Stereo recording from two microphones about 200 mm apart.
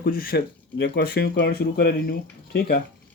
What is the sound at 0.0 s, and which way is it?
Speech, 45° left (ahead or behind).